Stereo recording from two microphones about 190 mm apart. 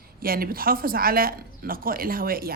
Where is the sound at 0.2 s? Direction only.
50° right (ahead or behind).